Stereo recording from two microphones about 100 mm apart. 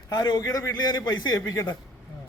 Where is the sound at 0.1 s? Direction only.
40° left (ahead or behind).